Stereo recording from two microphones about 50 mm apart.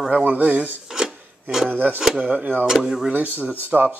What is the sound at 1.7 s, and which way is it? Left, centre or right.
Speech, right.